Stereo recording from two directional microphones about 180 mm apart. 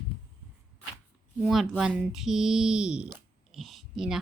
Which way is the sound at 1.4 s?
Centre (ahead or behind).